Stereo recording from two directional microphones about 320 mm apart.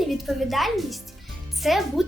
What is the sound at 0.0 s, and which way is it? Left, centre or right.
A woman's voice, centre.